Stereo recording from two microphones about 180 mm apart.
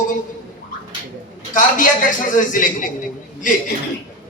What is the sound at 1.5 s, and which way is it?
A man's voice, 45° left (ahead or behind).